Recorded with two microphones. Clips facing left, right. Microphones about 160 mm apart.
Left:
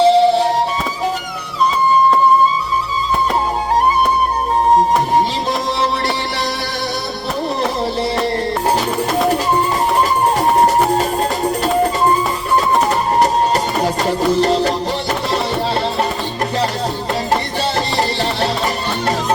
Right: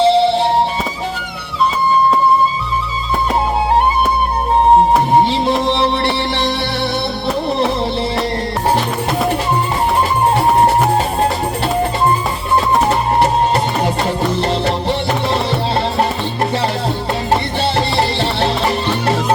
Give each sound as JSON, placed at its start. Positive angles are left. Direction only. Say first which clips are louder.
{"t": 0.0, "sound": "music", "louder": "left 1 dB", "side_deg": 40}
{"t": 14.4, "sound": "music", "louder": "left 1 dB", "side_deg": 40}
{"t": 17.9, "sound": "music", "louder": "right 1 dB", "side_deg": 40}